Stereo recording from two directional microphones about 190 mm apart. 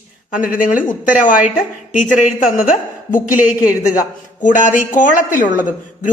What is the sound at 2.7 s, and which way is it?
Speech, 45° left (ahead or behind).